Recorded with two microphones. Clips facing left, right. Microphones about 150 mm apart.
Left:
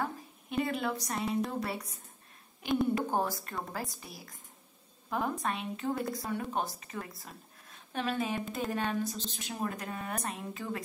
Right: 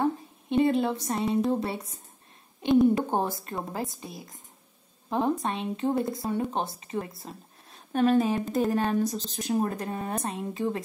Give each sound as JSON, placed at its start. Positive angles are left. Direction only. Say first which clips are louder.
{"t": 0.0, "sound": "speech", "louder": "right 9 dB", "side_deg": -25}
{"t": 5.4, "sound": "speech", "louder": "right 6 dB", "side_deg": -25}
{"t": 7.9, "sound": "speech", "louder": "right 10 dB", "side_deg": -45}